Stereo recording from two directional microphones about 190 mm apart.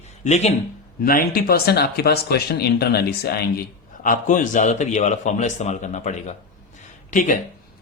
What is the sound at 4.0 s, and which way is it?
Speech, 45° left (ahead or behind).